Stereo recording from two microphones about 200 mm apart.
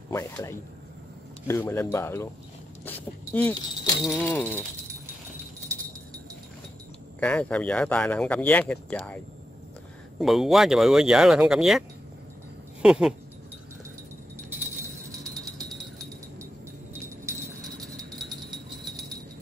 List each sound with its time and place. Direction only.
0.1 s speech: 15° left (ahead or behind)
7.2 s speech: 5° left (ahead or behind)
12.8 s speech: 5° right (ahead or behind)
15.0 s jingle bell: 20° right (ahead or behind)